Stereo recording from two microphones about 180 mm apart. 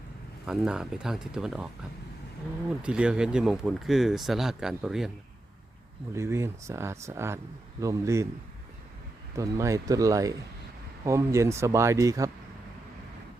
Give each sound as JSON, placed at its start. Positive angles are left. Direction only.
{"t": 0.4, "sound": "speech", "side_deg": -5}
{"t": 6.1, "sound": "speech", "side_deg": -15}
{"t": 9.3, "sound": "speech", "side_deg": -15}